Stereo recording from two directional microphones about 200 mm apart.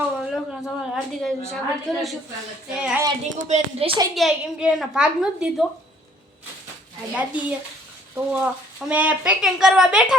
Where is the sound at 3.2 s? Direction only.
35° right (ahead or behind).